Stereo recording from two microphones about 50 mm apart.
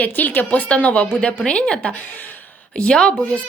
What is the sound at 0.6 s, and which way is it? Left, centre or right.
A woman's voice, left.